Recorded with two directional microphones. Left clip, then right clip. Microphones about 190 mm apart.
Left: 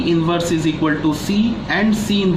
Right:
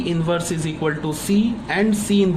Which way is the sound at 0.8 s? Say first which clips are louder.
Left 5 dB; 50° right (ahead or behind).